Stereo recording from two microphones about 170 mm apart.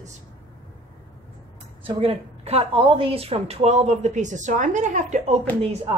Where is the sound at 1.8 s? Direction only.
35° right (ahead or behind).